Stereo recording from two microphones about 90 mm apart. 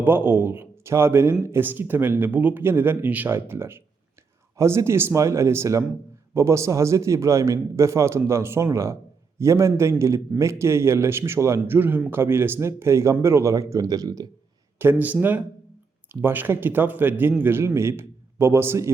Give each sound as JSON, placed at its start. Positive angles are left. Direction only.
{"t": 0.0, "sound": "a man's voice", "side_deg": -25}
{"t": 11.6, "sound": "a man's voice", "side_deg": -20}
{"t": 14.8, "sound": "a man's voice", "side_deg": -20}